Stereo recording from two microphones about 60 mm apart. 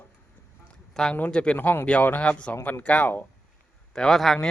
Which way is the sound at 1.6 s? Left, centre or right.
Left.